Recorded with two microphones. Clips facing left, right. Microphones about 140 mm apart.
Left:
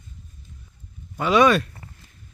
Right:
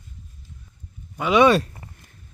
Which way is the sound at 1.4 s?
30° right (ahead or behind).